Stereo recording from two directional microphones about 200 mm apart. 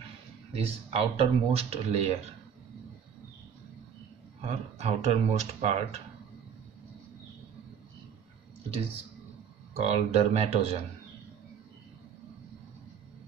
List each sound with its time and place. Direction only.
0.6 s speech: 30° right (ahead or behind)
4.5 s speech: 30° right (ahead or behind)
9.8 s speech: 30° right (ahead or behind)